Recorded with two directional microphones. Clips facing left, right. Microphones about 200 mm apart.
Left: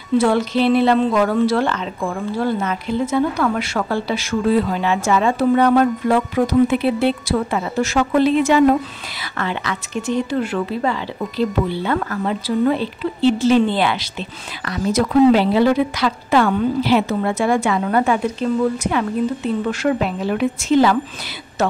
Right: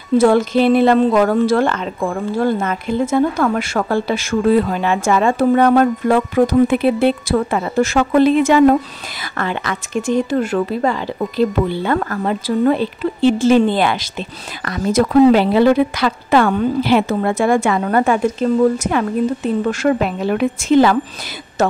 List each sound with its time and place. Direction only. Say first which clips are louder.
0.2 s a woman's voice: right 6 dB; 45° right (ahead or behind)